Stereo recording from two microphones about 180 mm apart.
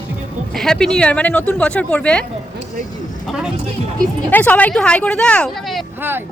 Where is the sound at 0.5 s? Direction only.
5° left (ahead or behind).